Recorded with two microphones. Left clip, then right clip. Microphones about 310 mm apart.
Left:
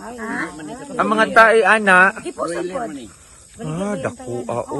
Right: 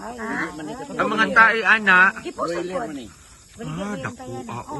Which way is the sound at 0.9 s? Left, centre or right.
Centre.